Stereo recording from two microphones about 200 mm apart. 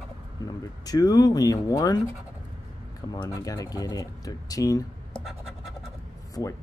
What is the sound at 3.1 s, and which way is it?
Speech, 20° left (ahead or behind).